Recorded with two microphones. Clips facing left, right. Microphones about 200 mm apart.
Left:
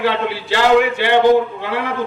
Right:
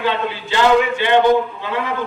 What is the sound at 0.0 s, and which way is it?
A man's voice, 70° left (ahead or behind).